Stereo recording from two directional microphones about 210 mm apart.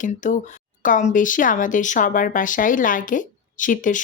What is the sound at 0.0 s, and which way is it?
Speech, 35° left (ahead or behind).